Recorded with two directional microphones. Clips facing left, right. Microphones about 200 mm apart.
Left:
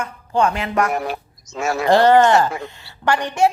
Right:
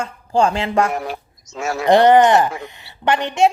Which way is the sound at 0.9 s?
65° left (ahead or behind).